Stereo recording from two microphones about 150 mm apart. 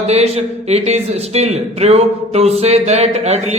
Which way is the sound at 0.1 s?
45° right (ahead or behind).